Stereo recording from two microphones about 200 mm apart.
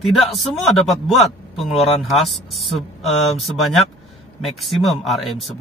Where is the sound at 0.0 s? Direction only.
Centre (ahead or behind).